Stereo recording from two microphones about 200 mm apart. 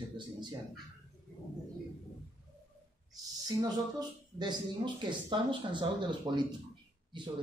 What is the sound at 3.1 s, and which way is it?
Speech, 20° right (ahead or behind).